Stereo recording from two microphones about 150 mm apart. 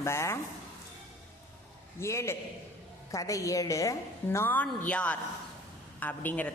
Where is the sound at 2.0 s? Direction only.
20° left (ahead or behind).